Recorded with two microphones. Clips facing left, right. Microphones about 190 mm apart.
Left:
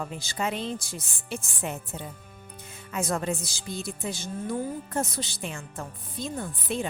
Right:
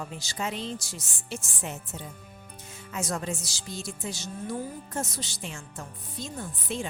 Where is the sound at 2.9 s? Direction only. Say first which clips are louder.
Left 4 dB; 55° left (ahead or behind).